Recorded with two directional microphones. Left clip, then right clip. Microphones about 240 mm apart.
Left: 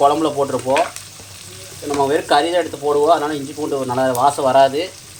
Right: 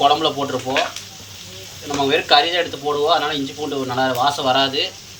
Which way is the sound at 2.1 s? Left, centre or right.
Left.